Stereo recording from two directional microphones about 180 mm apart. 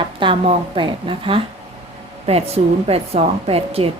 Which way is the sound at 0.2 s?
25° right (ahead or behind).